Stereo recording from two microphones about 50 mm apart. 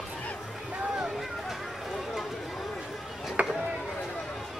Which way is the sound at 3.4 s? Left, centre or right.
Right.